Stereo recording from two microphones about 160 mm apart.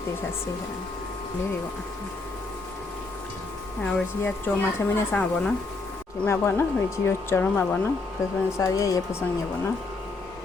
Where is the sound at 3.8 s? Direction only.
10° left (ahead or behind).